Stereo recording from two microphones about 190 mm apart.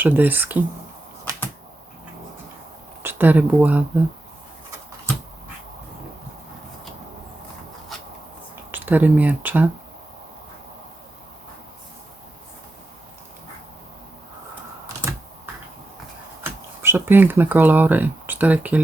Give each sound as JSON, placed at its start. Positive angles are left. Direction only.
{"t": 0.0, "sound": "speech", "side_deg": -10}
{"t": 3.0, "sound": "speech", "side_deg": -10}
{"t": 8.7, "sound": "speech", "side_deg": -10}
{"t": 16.4, "sound": "speech", "side_deg": -10}